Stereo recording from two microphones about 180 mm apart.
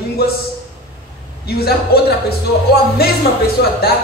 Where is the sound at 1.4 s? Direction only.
60° left (ahead or behind).